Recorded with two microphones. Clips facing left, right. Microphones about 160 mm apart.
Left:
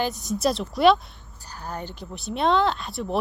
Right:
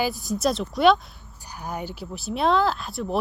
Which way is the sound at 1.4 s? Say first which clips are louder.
Right 2 dB; 10° right (ahead or behind).